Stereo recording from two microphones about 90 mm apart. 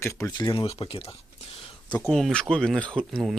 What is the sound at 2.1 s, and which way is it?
Speech, 5° left (ahead or behind).